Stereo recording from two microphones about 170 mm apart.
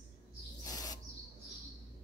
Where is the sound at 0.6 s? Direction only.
20° left (ahead or behind).